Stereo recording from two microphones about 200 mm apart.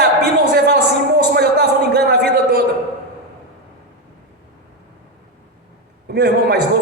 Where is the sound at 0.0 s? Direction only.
55° right (ahead or behind).